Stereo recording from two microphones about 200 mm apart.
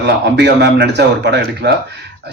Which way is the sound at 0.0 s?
55° right (ahead or behind).